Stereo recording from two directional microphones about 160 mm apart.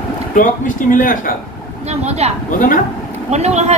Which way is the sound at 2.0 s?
40° right (ahead or behind).